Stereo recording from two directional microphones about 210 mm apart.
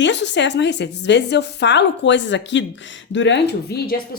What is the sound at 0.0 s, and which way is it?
A woman's voice, 60° left (ahead or behind).